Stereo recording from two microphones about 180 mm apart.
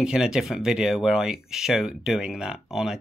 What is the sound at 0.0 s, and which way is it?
Speech, 5° right (ahead or behind).